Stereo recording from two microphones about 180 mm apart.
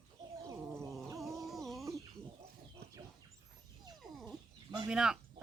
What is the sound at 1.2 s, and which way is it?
Music, 15° right (ahead or behind).